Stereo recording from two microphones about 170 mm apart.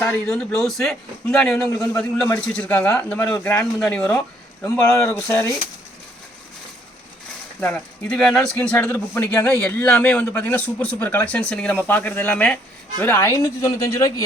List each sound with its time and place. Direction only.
0.0 s a man's voice: 5° left (ahead or behind)
1.7 s speech: 15° left (ahead or behind)
7.6 s speech: 5° left (ahead or behind)